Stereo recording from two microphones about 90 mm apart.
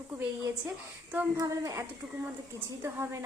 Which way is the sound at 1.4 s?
40° right (ahead or behind).